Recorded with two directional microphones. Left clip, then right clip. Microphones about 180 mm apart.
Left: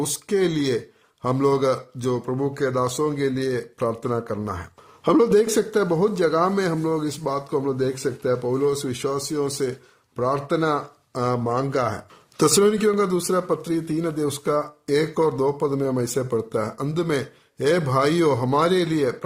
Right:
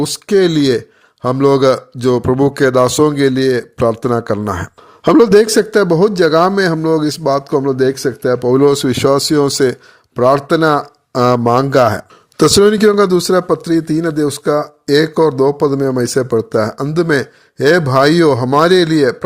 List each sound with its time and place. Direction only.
0.0 s speech: 35° right (ahead or behind)